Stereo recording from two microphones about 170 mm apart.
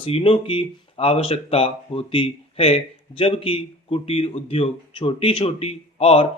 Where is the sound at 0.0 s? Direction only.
35° left (ahead or behind).